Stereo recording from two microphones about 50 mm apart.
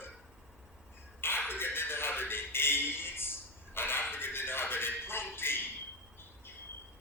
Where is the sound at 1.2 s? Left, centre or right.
Left.